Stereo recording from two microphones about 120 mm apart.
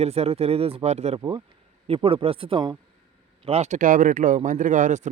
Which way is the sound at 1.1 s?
35° right (ahead or behind).